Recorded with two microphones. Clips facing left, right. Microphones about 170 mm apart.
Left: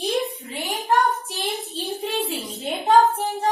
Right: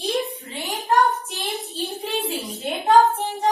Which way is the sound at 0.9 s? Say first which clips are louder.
Right 1 dB; centre (ahead or behind).